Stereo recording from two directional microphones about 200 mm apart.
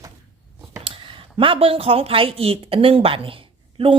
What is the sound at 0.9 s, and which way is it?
A woman's voice, 25° right (ahead or behind).